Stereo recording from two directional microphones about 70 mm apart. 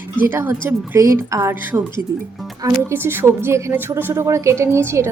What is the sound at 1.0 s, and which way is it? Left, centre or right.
Speech, right.